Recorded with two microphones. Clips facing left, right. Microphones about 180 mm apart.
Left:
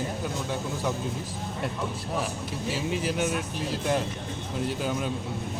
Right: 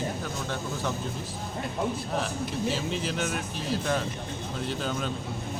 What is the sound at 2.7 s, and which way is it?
Speech, 10° left (ahead or behind).